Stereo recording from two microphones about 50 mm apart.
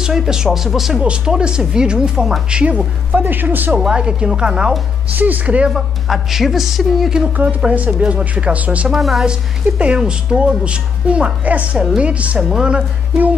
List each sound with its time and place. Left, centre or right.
0.0 s a woman's voice: centre
1.0 s a woman's voice: centre
2.5 s a woman's voice: right
3.1 s speech: right
3.7 s a woman's voice: centre
5.1 s speech: right
5.7 s a woman's voice: centre
7.4 s a woman's voice: right
8.9 s a woman's voice: centre
9.8 s a woman's voice: centre
12.4 s a woman's voice: centre